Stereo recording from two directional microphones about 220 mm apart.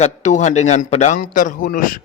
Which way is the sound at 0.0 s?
35° left (ahead or behind).